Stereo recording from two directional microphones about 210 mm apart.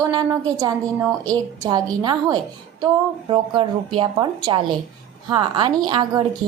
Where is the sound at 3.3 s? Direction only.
25° right (ahead or behind).